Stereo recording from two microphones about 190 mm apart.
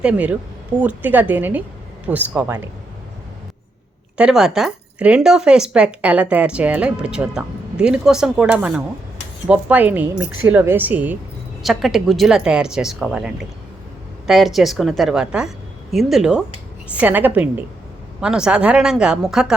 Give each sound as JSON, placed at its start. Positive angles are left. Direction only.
{"t": 0.0, "sound": "a woman's voice", "side_deg": -5}
{"t": 4.2, "sound": "a woman's voice", "side_deg": -5}